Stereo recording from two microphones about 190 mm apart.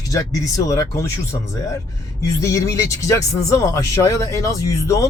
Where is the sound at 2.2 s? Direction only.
15° left (ahead or behind).